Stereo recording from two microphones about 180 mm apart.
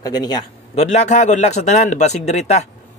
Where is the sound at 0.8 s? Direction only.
40° left (ahead or behind).